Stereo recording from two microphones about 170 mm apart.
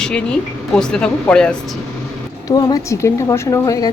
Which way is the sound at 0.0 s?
5° left (ahead or behind).